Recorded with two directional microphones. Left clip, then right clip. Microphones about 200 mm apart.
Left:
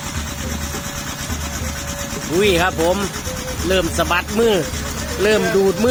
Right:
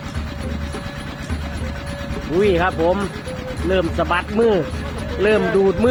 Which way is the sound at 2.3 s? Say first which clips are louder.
Left 1 dB; 5° left (ahead or behind).